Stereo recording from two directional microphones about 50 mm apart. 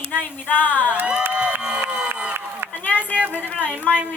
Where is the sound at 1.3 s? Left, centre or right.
Right.